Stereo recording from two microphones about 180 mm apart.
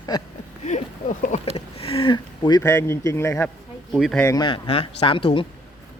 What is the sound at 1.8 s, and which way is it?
Speech, 30° left (ahead or behind).